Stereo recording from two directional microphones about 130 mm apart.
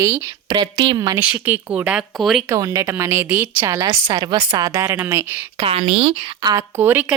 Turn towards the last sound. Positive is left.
turn(degrees=-15)  # may be behind; listen again after turning